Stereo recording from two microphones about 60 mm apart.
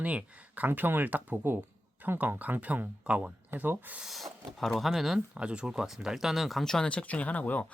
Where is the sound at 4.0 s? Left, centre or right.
Centre.